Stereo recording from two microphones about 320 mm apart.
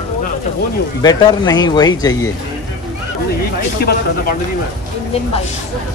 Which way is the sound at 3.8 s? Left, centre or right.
Left.